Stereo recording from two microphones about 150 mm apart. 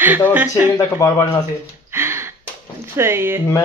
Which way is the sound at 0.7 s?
20° left (ahead or behind).